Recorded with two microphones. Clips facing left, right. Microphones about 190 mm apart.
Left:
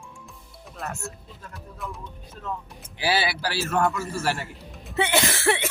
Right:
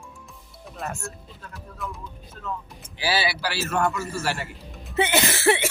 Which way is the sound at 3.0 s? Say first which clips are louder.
Even; 50° left (ahead or behind).